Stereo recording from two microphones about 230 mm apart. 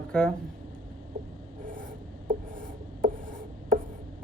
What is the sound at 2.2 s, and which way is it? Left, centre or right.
Writing, right.